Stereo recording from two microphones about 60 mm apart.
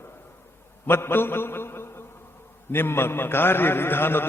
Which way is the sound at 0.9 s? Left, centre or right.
Left.